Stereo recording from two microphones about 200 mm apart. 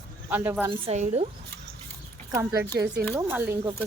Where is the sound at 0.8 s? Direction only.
35° right (ahead or behind).